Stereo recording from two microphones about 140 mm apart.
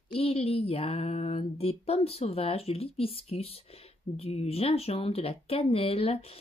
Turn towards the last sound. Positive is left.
turn(degrees=45)  # may be behind; listen again after turning